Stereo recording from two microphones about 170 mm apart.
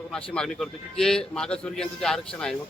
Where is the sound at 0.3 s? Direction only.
5° left (ahead or behind).